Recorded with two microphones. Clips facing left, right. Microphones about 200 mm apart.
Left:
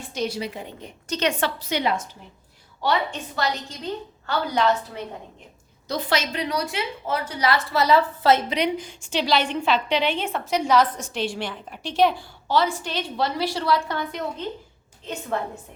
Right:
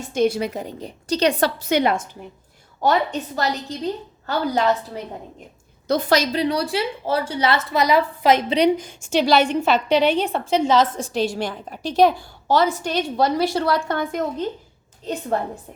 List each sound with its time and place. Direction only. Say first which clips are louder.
0.0 s a woman's voice: right 8 dB; 50° right (ahead or behind)
5.9 s a woman's voice: right 6 dB; 45° right (ahead or behind); by 8.4 s 15° right (ahead or behind)
8.4 s a woman's voice: right 7 dB; 35° right (ahead or behind)
15.0 s a woman's voice: right 5 dB; 35° right (ahead or behind)